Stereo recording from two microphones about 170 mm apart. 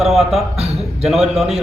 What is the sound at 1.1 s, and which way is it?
Speech, centre (ahead or behind).